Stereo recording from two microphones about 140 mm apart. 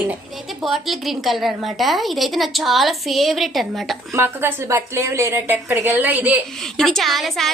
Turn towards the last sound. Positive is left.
turn(degrees=0)  # may be behind; listen again after turning